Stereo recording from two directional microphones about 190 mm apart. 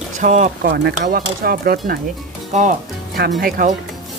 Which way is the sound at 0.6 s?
60° right (ahead or behind).